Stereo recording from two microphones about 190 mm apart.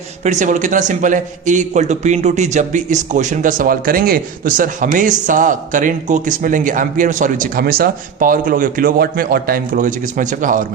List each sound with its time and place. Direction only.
0.3 s a man's voice: 40° right (ahead or behind)